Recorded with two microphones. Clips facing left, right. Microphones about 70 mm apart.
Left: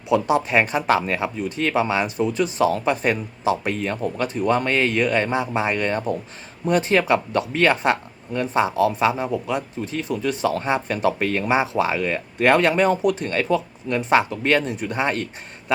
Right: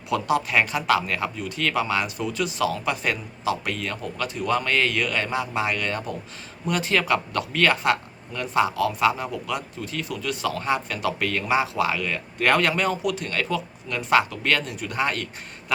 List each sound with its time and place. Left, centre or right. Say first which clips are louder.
0.1 s speech: left 4 dB; left